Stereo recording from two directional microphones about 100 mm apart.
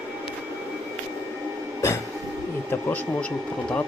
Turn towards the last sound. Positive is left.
turn(degrees=20)  # may be behind; listen again after turning